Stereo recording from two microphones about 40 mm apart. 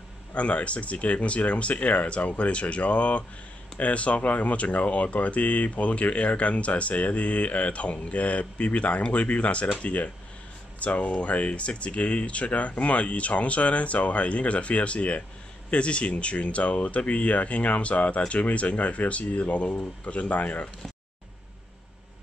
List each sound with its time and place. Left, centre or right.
0.3 s speech: left